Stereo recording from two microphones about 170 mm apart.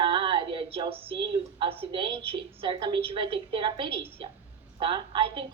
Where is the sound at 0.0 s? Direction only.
30° right (ahead or behind).